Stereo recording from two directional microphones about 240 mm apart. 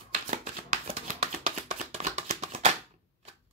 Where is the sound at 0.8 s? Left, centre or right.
Right.